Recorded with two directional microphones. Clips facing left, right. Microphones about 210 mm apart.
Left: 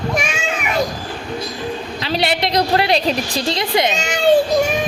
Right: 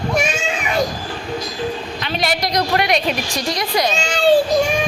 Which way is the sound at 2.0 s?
30° left (ahead or behind).